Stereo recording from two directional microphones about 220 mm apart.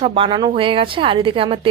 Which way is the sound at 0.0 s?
20° right (ahead or behind).